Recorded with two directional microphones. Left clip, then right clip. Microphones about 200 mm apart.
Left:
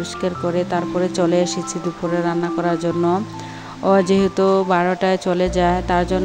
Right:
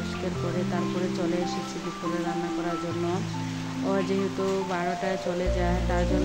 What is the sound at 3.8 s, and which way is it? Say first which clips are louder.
Speech: left 12 dB; 45° left (ahead or behind).